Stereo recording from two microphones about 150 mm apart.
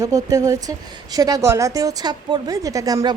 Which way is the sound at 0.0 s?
25° right (ahead or behind).